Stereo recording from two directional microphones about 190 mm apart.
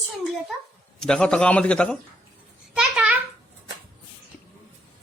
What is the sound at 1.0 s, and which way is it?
Speech, 5° left (ahead or behind).